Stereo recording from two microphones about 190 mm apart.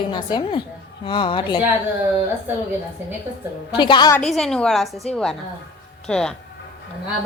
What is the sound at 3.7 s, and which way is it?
Speech, 25° left (ahead or behind).